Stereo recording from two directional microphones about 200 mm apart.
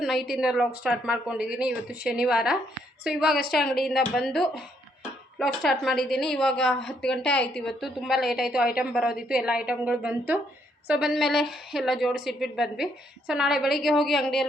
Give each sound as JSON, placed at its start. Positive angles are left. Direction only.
{"t": 0.0, "sound": "a woman's voice", "side_deg": 0}
{"t": 3.3, "sound": "a woman's voice", "side_deg": 50}
{"t": 3.6, "sound": "a woman's voice", "side_deg": 0}